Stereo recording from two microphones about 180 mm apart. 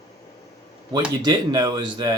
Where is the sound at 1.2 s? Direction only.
25° right (ahead or behind).